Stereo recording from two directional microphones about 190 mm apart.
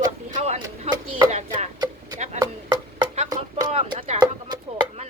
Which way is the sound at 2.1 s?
40° right (ahead or behind).